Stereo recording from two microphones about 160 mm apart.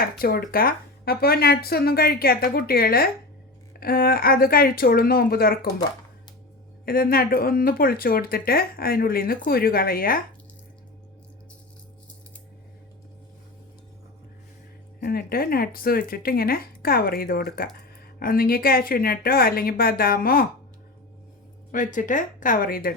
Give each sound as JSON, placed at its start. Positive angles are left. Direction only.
{"t": 0.0, "sound": "speech", "side_deg": 65}
{"t": 6.8, "sound": "speech", "side_deg": 65}
{"t": 15.0, "sound": "speech", "side_deg": 70}
{"t": 21.7, "sound": "speech", "side_deg": 55}